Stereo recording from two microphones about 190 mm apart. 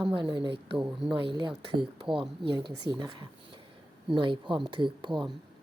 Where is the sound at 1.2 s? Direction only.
25° right (ahead or behind).